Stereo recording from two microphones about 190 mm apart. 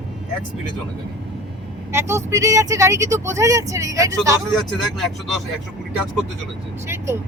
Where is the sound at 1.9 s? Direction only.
15° right (ahead or behind).